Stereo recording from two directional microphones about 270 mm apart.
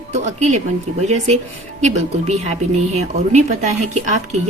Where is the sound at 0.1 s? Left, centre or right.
Right.